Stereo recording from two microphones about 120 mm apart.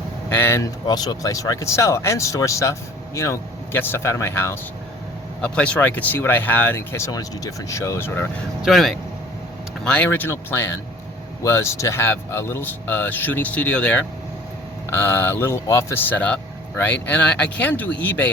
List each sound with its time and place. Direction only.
0.3 s speech: 20° left (ahead or behind)
0.9 s speech: 35° left (ahead or behind)
5.4 s speech: 10° left (ahead or behind)
8.6 s speech: centre (ahead or behind)
9.8 s speech: 10° left (ahead or behind)